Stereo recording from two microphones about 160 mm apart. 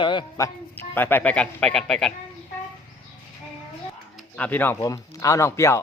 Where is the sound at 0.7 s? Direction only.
10° left (ahead or behind).